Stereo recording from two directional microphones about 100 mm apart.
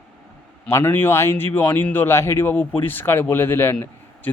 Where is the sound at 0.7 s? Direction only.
25° left (ahead or behind).